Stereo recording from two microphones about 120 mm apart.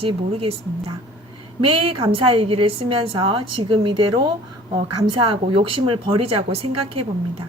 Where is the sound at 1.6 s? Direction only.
50° right (ahead or behind).